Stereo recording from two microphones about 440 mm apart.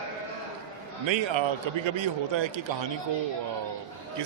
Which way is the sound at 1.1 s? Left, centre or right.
Right.